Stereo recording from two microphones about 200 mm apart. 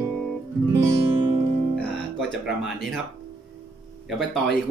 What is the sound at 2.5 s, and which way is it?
Speech, centre (ahead or behind).